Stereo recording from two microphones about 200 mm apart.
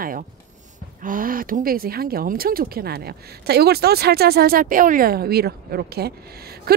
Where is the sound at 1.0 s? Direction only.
45° right (ahead or behind).